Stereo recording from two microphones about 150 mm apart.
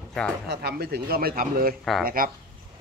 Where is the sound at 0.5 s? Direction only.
90° right; by 2.3 s 70° right (ahead or behind).